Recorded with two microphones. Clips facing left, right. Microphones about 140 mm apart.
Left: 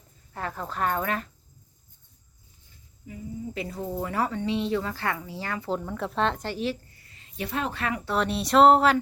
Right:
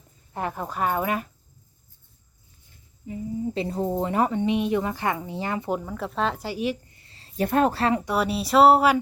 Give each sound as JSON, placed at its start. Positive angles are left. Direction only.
{"t": 0.3, "sound": "speech", "side_deg": -15}
{"t": 3.1, "sound": "a woman's voice", "side_deg": -30}
{"t": 5.8, "sound": "speech", "side_deg": 0}
{"t": 6.9, "sound": "a sound", "side_deg": -30}
{"t": 7.4, "sound": "speech", "side_deg": -50}
{"t": 7.8, "sound": "a woman's voice", "side_deg": -30}
{"t": 8.0, "sound": "speech", "side_deg": -10}